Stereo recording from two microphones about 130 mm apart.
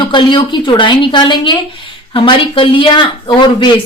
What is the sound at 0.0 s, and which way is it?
Speech, 40° left (ahead or behind).